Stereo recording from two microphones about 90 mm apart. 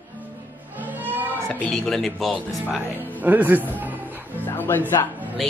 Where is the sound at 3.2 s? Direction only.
20° right (ahead or behind).